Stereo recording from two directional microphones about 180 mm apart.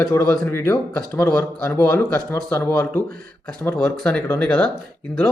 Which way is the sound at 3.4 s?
5° left (ahead or behind).